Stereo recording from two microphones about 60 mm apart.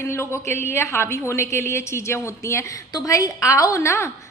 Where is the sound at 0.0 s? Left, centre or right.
Left.